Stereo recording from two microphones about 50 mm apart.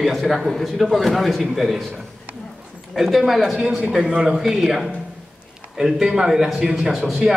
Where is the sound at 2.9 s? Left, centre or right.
Centre.